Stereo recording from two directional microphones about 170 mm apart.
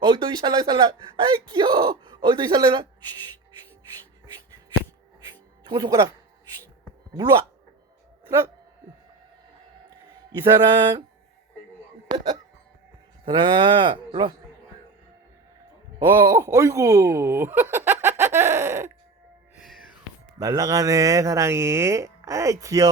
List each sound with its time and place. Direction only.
0.0 s speech: 30° right (ahead or behind)
5.6 s speech: 25° right (ahead or behind)
7.2 s speech: 20° right (ahead or behind)
10.3 s speech: 25° right (ahead or behind)
13.2 s speech: 30° right (ahead or behind)
16.0 s speech: 25° right (ahead or behind)
18.0 s a sound: 15° right (ahead or behind)
19.5 s music: centre (ahead or behind)
20.4 s speech: 20° right (ahead or behind)